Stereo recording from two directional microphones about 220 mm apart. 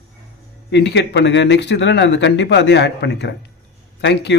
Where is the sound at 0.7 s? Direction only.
50° left (ahead or behind).